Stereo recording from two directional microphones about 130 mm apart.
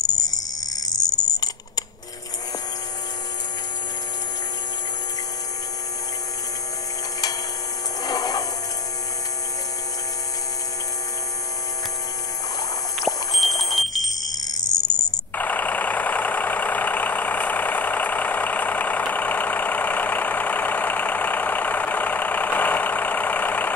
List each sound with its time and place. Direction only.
0.8 s a sound: 30° left (ahead or behind)
8.0 s wood: 30° left (ahead or behind)
13.4 s smoke detector: centre (ahead or behind)
14.6 s cricket: 30° left (ahead or behind)
15.3 s vehicle: 15° left (ahead or behind)